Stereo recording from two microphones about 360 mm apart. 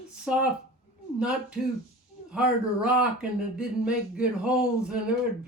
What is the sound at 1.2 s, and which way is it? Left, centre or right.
Speech, centre.